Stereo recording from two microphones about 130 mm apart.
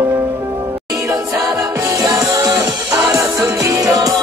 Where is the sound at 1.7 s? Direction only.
25° right (ahead or behind).